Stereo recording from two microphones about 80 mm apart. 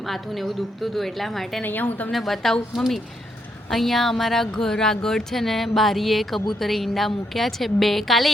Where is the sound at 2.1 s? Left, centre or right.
Centre.